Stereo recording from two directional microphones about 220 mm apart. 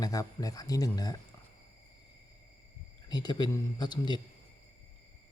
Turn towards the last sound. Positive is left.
turn(degrees=20)  # may be behind; listen again after turning